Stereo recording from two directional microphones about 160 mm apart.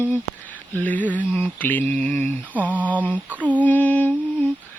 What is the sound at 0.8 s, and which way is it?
Mantra, 10° left (ahead or behind).